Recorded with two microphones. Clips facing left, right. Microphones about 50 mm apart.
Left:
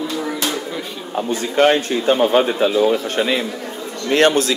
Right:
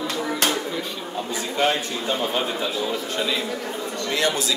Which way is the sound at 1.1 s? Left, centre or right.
Left.